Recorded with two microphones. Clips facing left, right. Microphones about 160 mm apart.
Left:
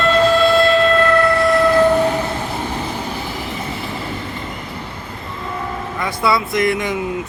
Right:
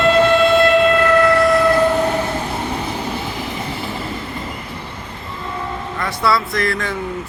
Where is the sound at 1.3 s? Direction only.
Centre (ahead or behind).